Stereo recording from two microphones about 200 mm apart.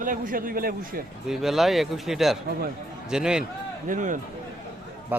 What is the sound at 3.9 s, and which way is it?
Speech, 40° right (ahead or behind).